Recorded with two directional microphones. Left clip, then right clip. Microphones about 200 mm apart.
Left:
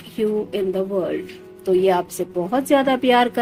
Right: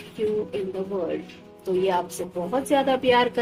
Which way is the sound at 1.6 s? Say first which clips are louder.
Left 6 dB; 40° left (ahead or behind).